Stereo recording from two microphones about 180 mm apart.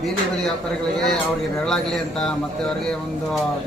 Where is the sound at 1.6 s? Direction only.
5° left (ahead or behind).